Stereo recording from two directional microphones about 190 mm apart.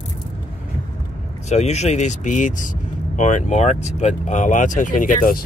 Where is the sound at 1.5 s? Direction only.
35° left (ahead or behind).